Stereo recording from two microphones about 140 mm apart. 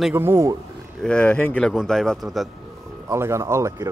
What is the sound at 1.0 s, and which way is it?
Speech, 10° left (ahead or behind).